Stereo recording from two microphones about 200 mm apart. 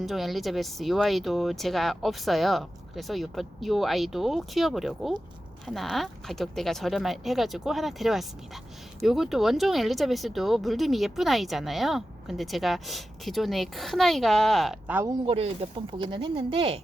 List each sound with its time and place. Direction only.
0.0 s speech: centre (ahead or behind)
15.3 s speech: 30° right (ahead or behind)